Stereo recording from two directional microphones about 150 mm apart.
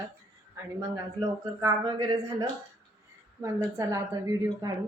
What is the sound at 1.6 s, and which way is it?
Speech, 30° right (ahead or behind).